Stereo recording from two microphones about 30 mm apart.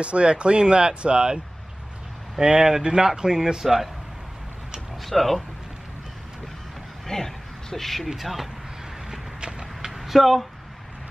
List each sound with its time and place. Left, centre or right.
0.0 s speech: right
2.4 s speech: right
5.0 s speech: centre
7.1 s speech: centre
8.1 s speech: centre
9.9 s speech: centre